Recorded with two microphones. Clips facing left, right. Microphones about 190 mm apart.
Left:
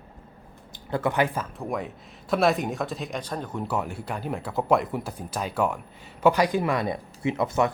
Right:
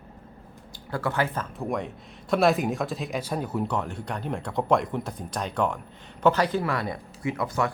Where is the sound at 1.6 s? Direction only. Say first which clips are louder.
Right 4 dB; centre (ahead or behind).